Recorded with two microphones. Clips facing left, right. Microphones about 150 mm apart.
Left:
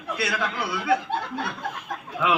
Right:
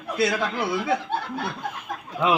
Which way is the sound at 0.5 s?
20° right (ahead or behind).